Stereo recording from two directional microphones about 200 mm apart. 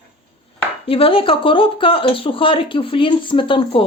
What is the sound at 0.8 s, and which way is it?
Speech, 25° left (ahead or behind).